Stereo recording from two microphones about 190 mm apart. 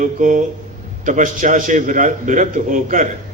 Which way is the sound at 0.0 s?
45° right (ahead or behind).